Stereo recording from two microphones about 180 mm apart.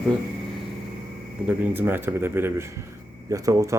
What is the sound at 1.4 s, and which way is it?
A man's voice, 10° right (ahead or behind).